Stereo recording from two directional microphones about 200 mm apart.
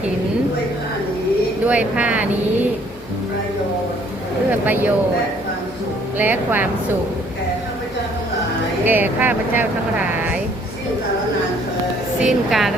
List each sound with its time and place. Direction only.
1.6 s speech: 5° right (ahead or behind)
4.6 s speech: 10° right (ahead or behind)
6.1 s speech: 10° right (ahead or behind)
8.8 s speech: 10° right (ahead or behind)
12.2 s a woman's voice: centre (ahead or behind)